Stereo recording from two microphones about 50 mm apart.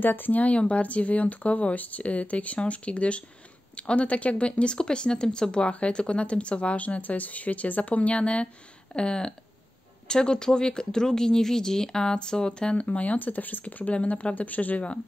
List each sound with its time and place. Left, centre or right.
0.0 s speech: left; by 12.8 s centre
12.8 s speech: left